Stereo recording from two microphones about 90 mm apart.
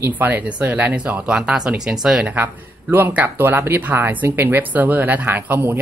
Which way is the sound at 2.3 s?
20° right (ahead or behind).